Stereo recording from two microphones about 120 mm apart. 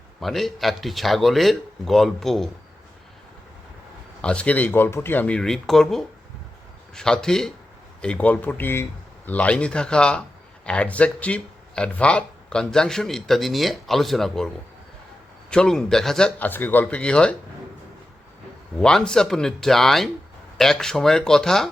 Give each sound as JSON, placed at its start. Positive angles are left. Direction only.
{"t": 0.2, "sound": "speech", "side_deg": 0}
{"t": 4.2, "sound": "speech", "side_deg": 10}
{"t": 16.5, "sound": "speech", "side_deg": 15}
{"t": 18.8, "sound": "speech", "side_deg": 5}